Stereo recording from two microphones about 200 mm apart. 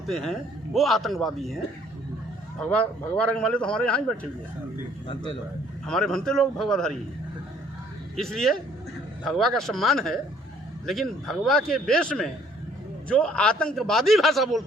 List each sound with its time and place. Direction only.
0.1 s a man's voice: centre (ahead or behind)
2.6 s a man's voice: 5° left (ahead or behind)
5.0 s a man's voice: 25° left (ahead or behind)
5.8 s a man's voice: 5° left (ahead or behind)
8.1 s a man's voice: centre (ahead or behind)